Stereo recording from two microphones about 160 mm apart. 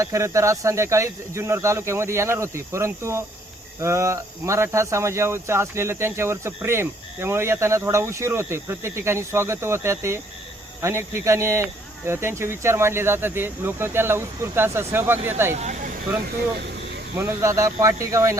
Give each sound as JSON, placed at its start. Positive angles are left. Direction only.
{"t": 0.0, "sound": "speech", "side_deg": -20}
{"t": 15.5, "sound": "speech", "side_deg": -45}
{"t": 17.2, "sound": "speech", "side_deg": -15}